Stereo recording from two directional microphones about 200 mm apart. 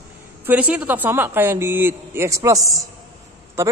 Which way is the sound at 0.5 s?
5° right (ahead or behind).